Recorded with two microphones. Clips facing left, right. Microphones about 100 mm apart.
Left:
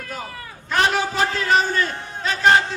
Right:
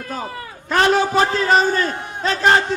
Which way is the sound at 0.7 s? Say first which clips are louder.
Right 4 dB; 50° right (ahead or behind).